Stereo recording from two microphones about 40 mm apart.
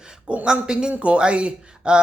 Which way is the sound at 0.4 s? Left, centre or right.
Right.